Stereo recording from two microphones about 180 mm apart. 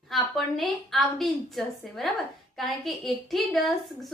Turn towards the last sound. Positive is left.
turn(degrees=0)  # may be behind; listen again after turning